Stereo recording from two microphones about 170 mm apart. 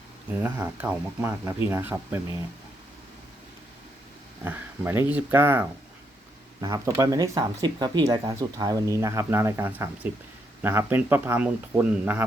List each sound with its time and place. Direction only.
0.4 s speech: 10° right (ahead or behind)
4.4 s speech: 15° right (ahead or behind)